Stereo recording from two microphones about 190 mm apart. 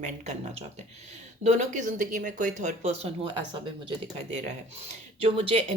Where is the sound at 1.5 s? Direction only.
40° right (ahead or behind).